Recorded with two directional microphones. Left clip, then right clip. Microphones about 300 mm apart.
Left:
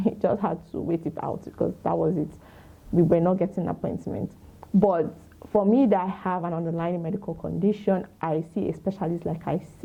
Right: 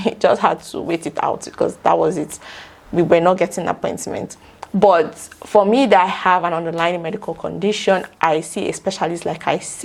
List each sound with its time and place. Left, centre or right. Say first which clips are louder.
0.0 s speech: right 10 dB; centre